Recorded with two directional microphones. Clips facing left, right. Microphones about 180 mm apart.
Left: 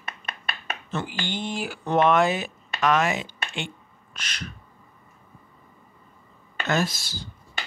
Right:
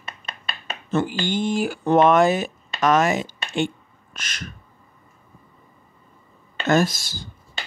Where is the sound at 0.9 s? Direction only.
45° right (ahead or behind).